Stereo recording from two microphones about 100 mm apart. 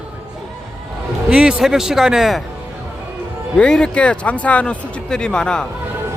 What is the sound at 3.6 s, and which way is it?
Speech, 10° left (ahead or behind).